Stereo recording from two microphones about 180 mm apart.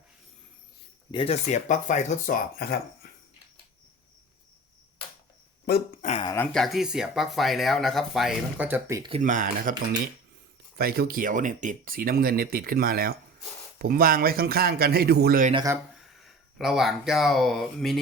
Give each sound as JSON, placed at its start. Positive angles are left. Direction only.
{"t": 1.1, "sound": "speech", "side_deg": 35}
{"t": 6.0, "sound": "speech", "side_deg": 40}
{"t": 6.2, "sound": "speech", "side_deg": 15}
{"t": 6.5, "sound": "speech", "side_deg": 0}
{"t": 9.2, "sound": "speech", "side_deg": -45}
{"t": 10.8, "sound": "speech", "side_deg": -55}
{"t": 15.5, "sound": "speech", "side_deg": -15}
{"t": 16.2, "sound": "speech", "side_deg": 0}